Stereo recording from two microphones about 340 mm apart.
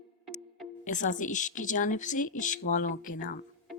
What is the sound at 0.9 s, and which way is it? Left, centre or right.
Speech, left.